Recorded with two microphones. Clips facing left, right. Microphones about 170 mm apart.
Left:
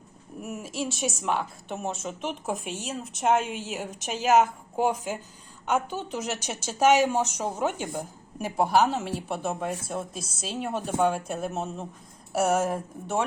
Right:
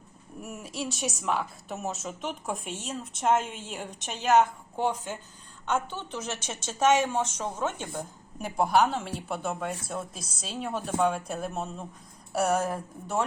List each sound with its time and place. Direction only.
0.4 s a woman's voice: centre (ahead or behind)